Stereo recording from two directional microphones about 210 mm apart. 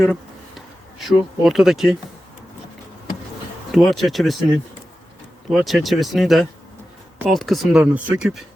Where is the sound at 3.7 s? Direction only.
Centre (ahead or behind).